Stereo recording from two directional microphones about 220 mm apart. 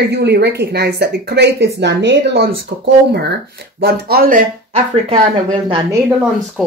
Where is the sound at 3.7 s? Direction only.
45° right (ahead or behind).